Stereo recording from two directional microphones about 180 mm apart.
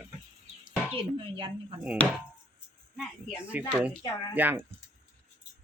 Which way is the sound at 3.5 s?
10° right (ahead or behind).